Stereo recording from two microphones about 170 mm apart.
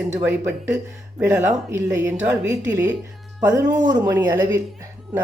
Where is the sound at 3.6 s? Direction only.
50° right (ahead or behind).